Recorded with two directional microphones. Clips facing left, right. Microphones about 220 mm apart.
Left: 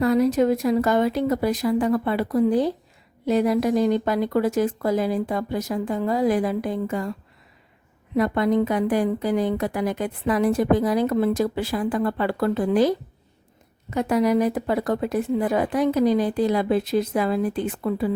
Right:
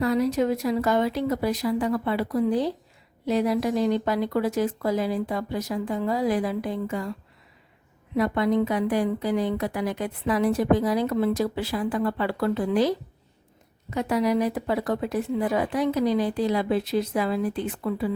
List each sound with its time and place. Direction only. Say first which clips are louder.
0.0 s a woman's voice: left 4 dB; 50° left (ahead or behind)
8.1 s a woman's voice: left 2 dB; 50° left (ahead or behind)
13.9 s a woman's voice: left 3 dB; 50° left (ahead or behind)